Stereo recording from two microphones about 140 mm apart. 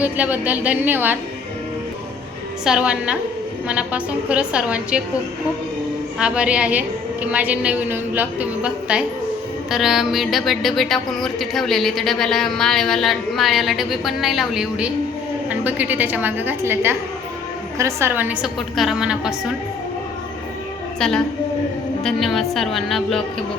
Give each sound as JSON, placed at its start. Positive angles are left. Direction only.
{"t": 0.0, "sound": "a woman's voice", "side_deg": -10}
{"t": 2.6, "sound": "a woman's voice", "side_deg": -5}
{"t": 6.1, "sound": "a woman's voice", "side_deg": -10}
{"t": 18.4, "sound": "speech", "side_deg": -5}
{"t": 22.0, "sound": "speech", "side_deg": 0}